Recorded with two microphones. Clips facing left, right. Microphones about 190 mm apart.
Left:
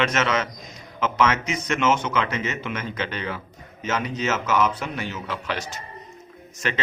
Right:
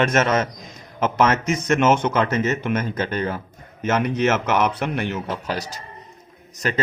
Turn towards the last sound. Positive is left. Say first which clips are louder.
# right 3 dB
turn(degrees=-40)  # may be behind; listen again after turning